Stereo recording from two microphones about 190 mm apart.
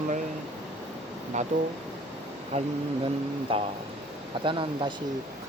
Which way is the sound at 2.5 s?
30° right (ahead or behind).